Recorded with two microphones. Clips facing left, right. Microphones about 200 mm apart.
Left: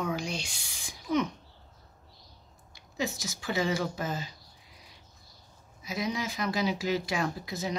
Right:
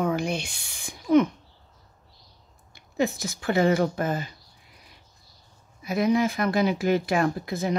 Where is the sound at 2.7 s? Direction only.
55° right (ahead or behind).